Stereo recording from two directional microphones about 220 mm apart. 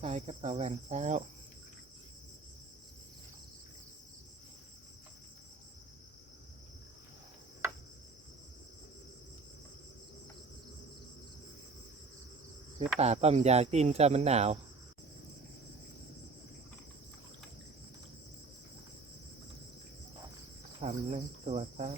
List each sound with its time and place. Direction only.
0.0 s speech: 30° right (ahead or behind)
13.0 s speech: 30° right (ahead or behind)
20.8 s speech: 30° right (ahead or behind)